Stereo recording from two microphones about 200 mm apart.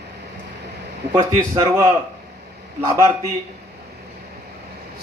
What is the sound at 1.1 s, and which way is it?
Speech, 15° right (ahead or behind).